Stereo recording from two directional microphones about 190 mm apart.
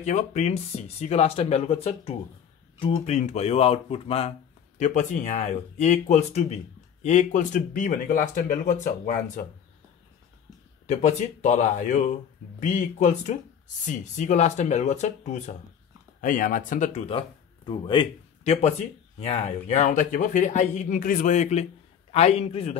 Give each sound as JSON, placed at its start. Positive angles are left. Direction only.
{"t": 0.0, "sound": "speech", "side_deg": 40}
{"t": 10.9, "sound": "speech", "side_deg": 40}